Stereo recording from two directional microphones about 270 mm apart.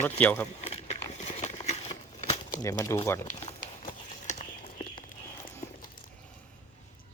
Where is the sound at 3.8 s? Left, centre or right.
Left.